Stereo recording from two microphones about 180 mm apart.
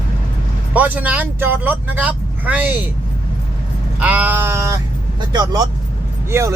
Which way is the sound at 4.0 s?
10° right (ahead or behind).